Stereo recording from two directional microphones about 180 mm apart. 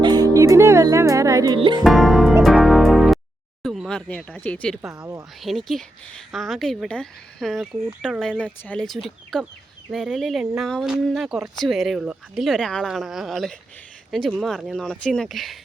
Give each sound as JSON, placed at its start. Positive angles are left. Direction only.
{"t": 0.0, "sound": "music", "side_deg": -20}
{"t": 1.5, "sound": "speech", "side_deg": -30}
{"t": 1.8, "sound": "speech", "side_deg": 0}
{"t": 2.4, "sound": "music", "side_deg": 0}
{"t": 3.6, "sound": "speech", "side_deg": 0}